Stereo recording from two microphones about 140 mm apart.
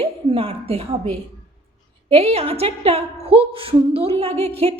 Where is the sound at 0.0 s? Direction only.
45° right (ahead or behind).